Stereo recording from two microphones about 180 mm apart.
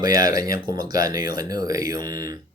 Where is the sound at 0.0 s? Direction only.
20° right (ahead or behind).